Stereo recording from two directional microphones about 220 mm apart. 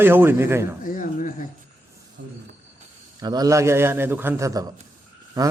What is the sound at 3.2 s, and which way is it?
Speech, 15° right (ahead or behind).